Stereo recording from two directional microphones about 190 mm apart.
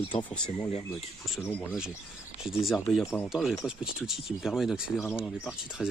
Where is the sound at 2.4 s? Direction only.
Centre (ahead or behind).